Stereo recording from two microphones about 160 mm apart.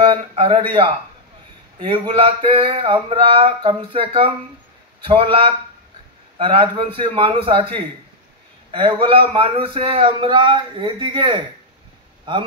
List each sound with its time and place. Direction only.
0.0 s a man's voice: 30° right (ahead or behind)